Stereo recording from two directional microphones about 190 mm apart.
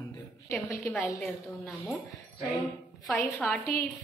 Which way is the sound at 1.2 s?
Centre (ahead or behind).